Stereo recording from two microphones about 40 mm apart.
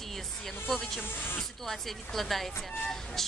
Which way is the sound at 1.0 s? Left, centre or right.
Left.